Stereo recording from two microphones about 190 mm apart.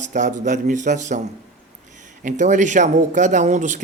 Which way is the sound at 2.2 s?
40° right (ahead or behind).